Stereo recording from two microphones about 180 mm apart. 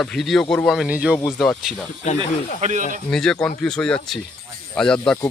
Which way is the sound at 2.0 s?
40° left (ahead or behind).